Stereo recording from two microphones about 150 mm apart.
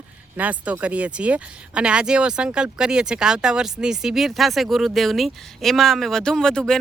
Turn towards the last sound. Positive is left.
turn(degrees=5)  # may be behind; listen again after turning